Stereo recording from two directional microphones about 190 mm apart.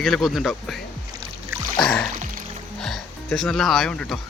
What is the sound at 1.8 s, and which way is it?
Music, 5° left (ahead or behind).